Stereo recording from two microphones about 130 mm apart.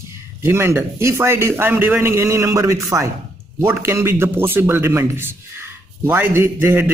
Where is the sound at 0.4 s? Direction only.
20° right (ahead or behind).